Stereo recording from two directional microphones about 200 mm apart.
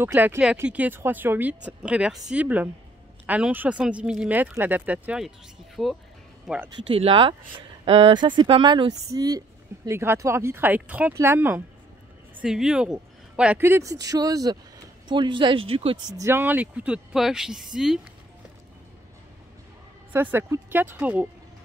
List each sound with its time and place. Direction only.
0.0 s speech: 10° right (ahead or behind)
6.7 s speech: 30° right (ahead or behind)
16.2 s speech: 10° right (ahead or behind)
20.1 s speech: 10° right (ahead or behind)